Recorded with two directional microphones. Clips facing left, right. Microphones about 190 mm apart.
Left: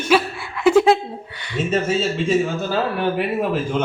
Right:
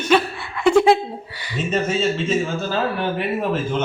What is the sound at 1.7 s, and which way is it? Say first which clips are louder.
A woman's voice: even; 5° left (ahead or behind).